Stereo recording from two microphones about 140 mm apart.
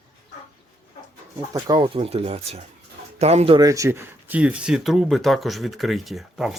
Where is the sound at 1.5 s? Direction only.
30° right (ahead or behind).